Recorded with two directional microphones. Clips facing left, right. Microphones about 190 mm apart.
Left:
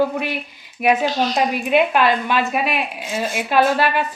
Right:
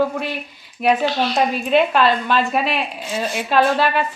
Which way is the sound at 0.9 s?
45° left (ahead or behind).